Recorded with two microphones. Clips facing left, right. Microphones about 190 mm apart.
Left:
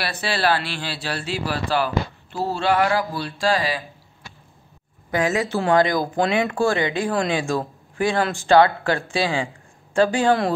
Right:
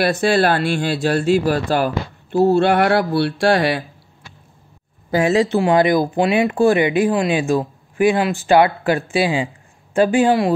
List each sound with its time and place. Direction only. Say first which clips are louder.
0.0 s speech: right 8 dB; 50° right (ahead or behind)
2.6 s speech: right 5 dB; 60° right (ahead or behind)
5.1 s speech: right 6 dB; 30° right (ahead or behind)
5.6 s speech: right 4 dB; 15° right (ahead or behind)